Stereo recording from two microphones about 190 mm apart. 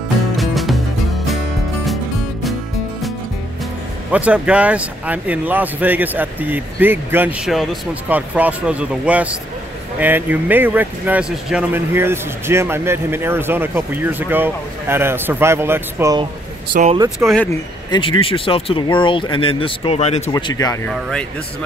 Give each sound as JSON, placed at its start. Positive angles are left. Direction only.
{"t": 0.4, "sound": "music", "side_deg": 0}
{"t": 4.1, "sound": "speech", "side_deg": -5}
{"t": 17.5, "sound": "speech", "side_deg": 25}
{"t": 20.3, "sound": "speech", "side_deg": 20}
{"t": 20.9, "sound": "speech", "side_deg": 5}